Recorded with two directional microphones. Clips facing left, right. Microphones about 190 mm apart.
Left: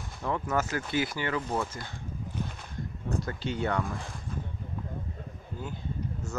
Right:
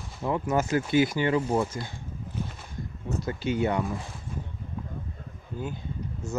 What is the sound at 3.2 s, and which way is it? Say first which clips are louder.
Speech: right 7 dB; 10° right (ahead or behind).